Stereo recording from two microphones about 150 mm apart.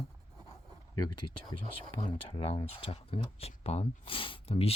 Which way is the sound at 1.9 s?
35° left (ahead or behind).